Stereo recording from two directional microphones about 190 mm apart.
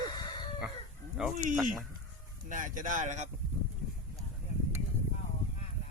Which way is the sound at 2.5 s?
45° right (ahead or behind).